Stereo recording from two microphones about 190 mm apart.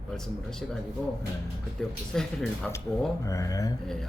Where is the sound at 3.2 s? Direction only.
15° left (ahead or behind).